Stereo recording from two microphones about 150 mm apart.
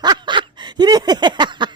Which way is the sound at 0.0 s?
30° right (ahead or behind).